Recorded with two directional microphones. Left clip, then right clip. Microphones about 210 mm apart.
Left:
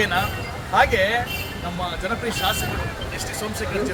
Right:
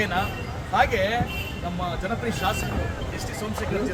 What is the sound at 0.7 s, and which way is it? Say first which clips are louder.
Speech: left 4 dB; 25° right (ahead or behind).